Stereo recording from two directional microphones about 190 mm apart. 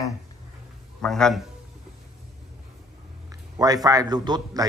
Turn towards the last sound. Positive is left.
turn(degrees=-20)  # may be behind; listen again after turning